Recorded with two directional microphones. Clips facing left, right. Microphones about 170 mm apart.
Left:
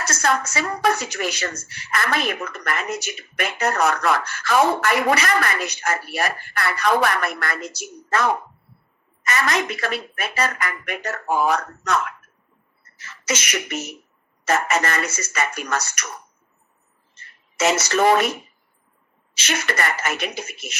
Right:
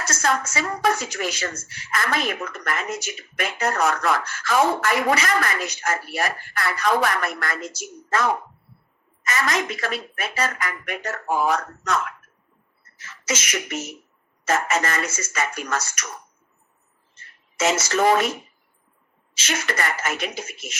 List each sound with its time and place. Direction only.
0.0 s speech: 65° left (ahead or behind)
13.0 s beatboxing: 65° left (ahead or behind)
14.4 s speech: 65° left (ahead or behind)
17.6 s speech: 65° left (ahead or behind)